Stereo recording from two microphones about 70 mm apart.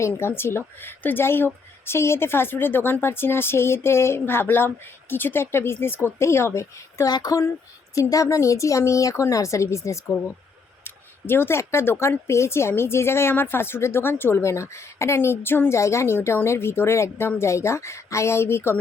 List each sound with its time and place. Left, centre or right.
0.2 s a woman's voice: left
7.0 s speech: left
7.9 s speech: left
10.8 s a woman's voice: left
15.8 s a woman's voice: left